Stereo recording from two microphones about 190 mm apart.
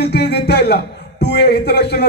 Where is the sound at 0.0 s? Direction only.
60° left (ahead or behind).